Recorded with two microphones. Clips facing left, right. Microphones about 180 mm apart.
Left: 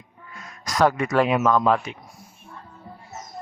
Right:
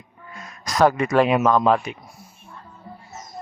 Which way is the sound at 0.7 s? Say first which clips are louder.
Right 2 dB; 30° right (ahead or behind).